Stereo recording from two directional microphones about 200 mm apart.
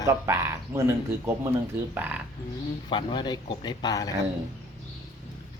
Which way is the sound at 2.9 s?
25° left (ahead or behind).